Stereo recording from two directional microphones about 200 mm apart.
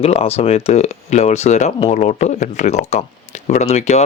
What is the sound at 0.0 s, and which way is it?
Speech, 30° left (ahead or behind).